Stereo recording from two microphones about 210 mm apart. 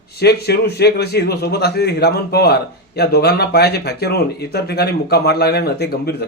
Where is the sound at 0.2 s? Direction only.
50° left (ahead or behind).